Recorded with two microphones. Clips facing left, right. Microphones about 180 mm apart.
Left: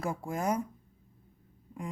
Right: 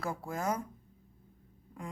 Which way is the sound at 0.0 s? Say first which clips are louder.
Left 3 dB; 20° left (ahead or behind).